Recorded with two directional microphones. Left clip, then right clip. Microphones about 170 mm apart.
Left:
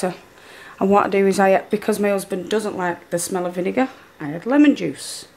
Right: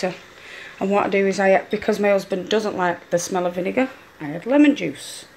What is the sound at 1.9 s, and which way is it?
Speech, 20° left (ahead or behind).